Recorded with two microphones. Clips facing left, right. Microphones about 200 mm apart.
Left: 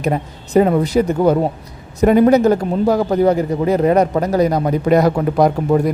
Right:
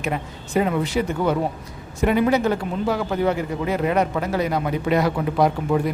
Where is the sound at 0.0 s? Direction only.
40° left (ahead or behind).